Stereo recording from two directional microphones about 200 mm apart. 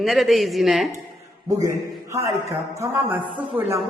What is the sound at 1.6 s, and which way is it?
A man's voice, 15° right (ahead or behind).